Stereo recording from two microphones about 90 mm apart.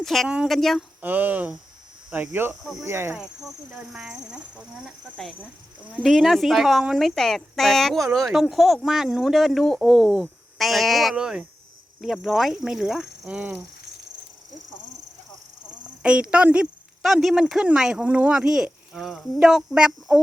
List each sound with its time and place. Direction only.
0.0 s speech: 5° left (ahead or behind)
1.0 s speech: 20° right (ahead or behind)
2.3 s speech: 25° right (ahead or behind)
3.2 s speech: 5° right (ahead or behind)
6.0 s speech: centre (ahead or behind)
16.0 s speech: 10° right (ahead or behind)